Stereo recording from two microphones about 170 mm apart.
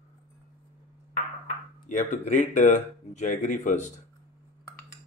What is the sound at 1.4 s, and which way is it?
Speech, 50° left (ahead or behind).